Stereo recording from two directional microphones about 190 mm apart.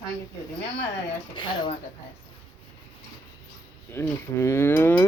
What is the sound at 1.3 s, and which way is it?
Speech, 25° left (ahead or behind).